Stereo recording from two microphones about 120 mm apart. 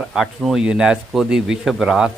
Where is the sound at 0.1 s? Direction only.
5° right (ahead or behind).